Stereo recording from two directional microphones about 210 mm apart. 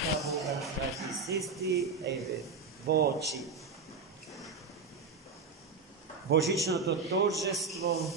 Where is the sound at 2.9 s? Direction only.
50° right (ahead or behind).